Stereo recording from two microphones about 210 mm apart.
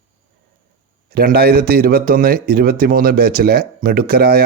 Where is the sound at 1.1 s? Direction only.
45° right (ahead or behind).